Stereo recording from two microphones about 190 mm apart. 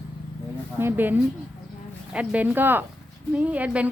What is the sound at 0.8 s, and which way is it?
A woman's voice, 10° right (ahead or behind).